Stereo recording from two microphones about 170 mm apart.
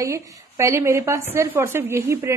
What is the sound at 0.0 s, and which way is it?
A woman's voice, 15° right (ahead or behind).